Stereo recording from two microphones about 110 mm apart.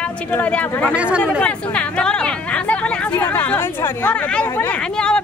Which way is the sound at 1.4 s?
10° left (ahead or behind).